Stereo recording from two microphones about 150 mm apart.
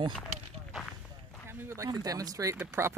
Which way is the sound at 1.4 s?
20° right (ahead or behind).